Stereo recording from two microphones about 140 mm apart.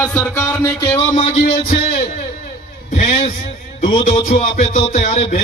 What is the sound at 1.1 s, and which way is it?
Music, 65° left (ahead or behind).